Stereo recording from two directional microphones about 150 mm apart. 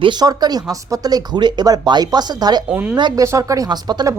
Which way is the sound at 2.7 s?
10° right (ahead or behind).